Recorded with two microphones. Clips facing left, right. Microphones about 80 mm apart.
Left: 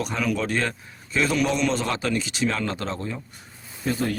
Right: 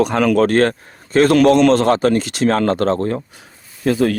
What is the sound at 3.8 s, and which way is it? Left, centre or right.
Speech, right.